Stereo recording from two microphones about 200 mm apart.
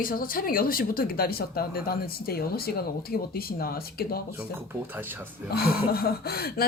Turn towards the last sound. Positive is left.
turn(degrees=50)  # may be behind; listen again after turning